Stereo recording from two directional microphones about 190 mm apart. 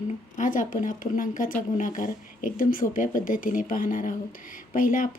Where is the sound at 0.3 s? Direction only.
45° left (ahead or behind).